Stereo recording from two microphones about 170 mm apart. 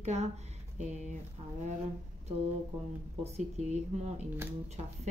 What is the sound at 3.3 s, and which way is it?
Speech, 40° right (ahead or behind).